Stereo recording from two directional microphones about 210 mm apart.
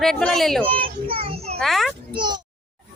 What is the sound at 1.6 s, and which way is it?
Speech, centre (ahead or behind).